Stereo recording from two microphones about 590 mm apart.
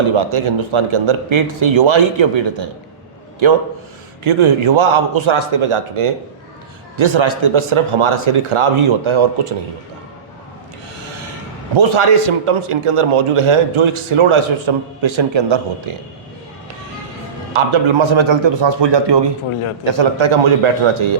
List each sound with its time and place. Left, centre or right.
0.2 s speech: right
11.7 s a man's voice: right
17.5 s speech: right
19.8 s a man's voice: right